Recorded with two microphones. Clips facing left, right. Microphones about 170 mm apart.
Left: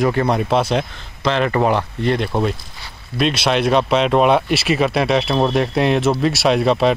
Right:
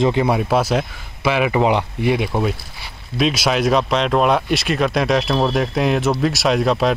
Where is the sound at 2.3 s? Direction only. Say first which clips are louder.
Left 1 dB; 5° left (ahead or behind).